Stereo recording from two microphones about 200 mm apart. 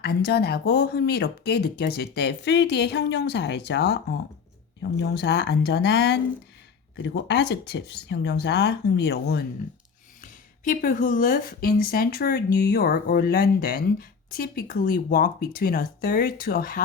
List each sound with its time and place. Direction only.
0.0 s speech: 55° left (ahead or behind)
10.6 s speech: 45° left (ahead or behind)